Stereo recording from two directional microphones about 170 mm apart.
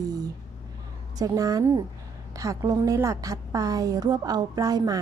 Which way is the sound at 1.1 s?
20° right (ahead or behind).